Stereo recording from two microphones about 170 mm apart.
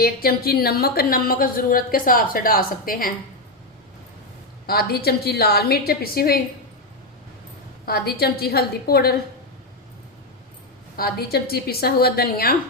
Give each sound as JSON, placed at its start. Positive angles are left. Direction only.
{"t": 0.0, "sound": "a woman's voice", "side_deg": 65}
{"t": 4.6, "sound": "a woman's voice", "side_deg": 65}
{"t": 7.9, "sound": "a woman's voice", "side_deg": 65}
{"t": 10.9, "sound": "a woman's voice", "side_deg": 65}